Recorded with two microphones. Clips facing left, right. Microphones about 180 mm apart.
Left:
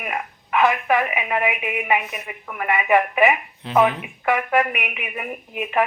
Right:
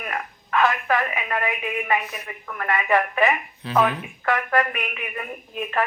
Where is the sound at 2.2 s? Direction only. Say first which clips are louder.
Left 3 dB; 10° left (ahead or behind).